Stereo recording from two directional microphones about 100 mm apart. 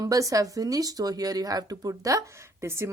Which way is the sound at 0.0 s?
35° right (ahead or behind).